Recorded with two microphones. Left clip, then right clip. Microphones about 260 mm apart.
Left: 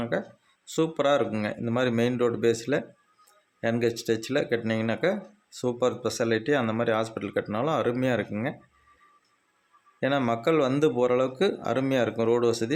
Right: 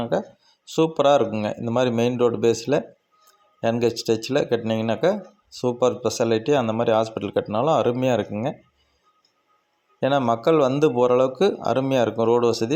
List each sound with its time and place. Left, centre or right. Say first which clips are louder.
0.0 s a man's voice: right 5 dB; centre
10.0 s a man's voice: right 5 dB; centre